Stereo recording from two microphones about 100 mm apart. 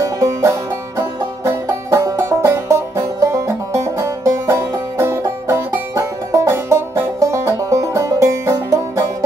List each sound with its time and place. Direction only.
0.0 s music: 30° right (ahead or behind)